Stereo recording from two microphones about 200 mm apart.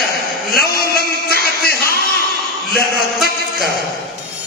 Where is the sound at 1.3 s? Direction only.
50° left (ahead or behind).